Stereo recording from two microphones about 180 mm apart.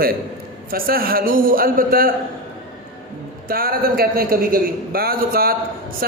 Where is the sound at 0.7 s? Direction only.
55° right (ahead or behind).